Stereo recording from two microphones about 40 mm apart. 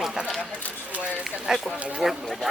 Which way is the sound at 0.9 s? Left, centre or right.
Right.